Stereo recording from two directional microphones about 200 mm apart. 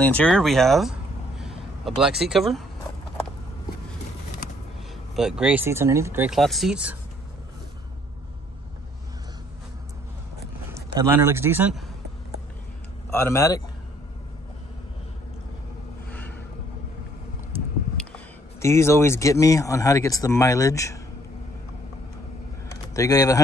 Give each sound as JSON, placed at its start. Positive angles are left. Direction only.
{"t": 0.0, "sound": "speech", "side_deg": 5}
{"t": 5.1, "sound": "speech", "side_deg": -5}
{"t": 10.7, "sound": "a man's voice", "side_deg": -15}
{"t": 13.1, "sound": "a man's voice", "side_deg": 15}
{"t": 16.1, "sound": "a sound", "side_deg": 10}
{"t": 17.9, "sound": "speech", "side_deg": 10}
{"t": 22.7, "sound": "a sound", "side_deg": 15}